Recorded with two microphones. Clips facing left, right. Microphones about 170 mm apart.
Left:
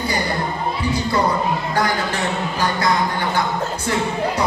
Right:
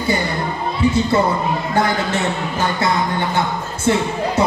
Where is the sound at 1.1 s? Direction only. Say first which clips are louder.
Right 2 dB; 25° right (ahead or behind).